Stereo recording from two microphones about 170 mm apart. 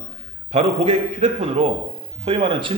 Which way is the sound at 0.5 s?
40° right (ahead or behind).